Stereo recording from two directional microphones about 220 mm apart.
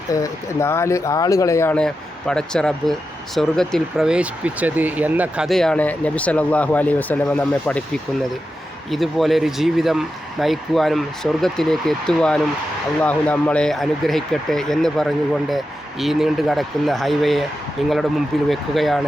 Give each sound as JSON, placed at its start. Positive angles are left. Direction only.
{"t": 0.1, "sound": "speech", "side_deg": 15}
{"t": 8.9, "sound": "speech", "side_deg": 0}